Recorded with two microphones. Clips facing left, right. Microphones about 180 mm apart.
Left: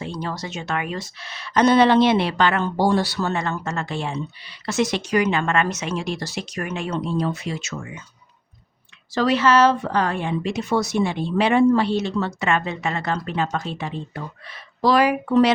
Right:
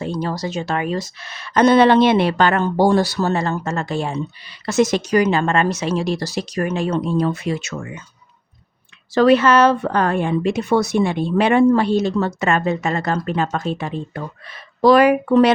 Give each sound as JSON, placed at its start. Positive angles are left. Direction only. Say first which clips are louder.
{"t": 0.0, "sound": "speech", "louder": "right 6 dB", "side_deg": -40}
{"t": 9.1, "sound": "a woman's voice", "louder": "right 5 dB", "side_deg": -55}